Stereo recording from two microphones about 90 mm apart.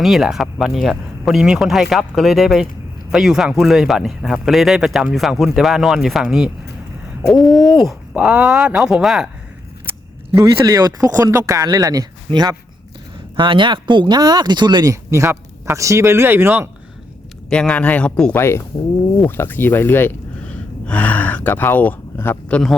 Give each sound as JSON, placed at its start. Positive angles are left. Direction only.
{"t": 0.0, "sound": "speech", "side_deg": -5}
{"t": 8.2, "sound": "speech", "side_deg": -10}
{"t": 10.3, "sound": "speech", "side_deg": -35}
{"t": 10.8, "sound": "speech", "side_deg": -50}
{"t": 13.3, "sound": "speech", "side_deg": -65}
{"t": 15.1, "sound": "speech", "side_deg": -30}
{"t": 17.5, "sound": "speech", "side_deg": 10}
{"t": 18.3, "sound": "speech", "side_deg": 30}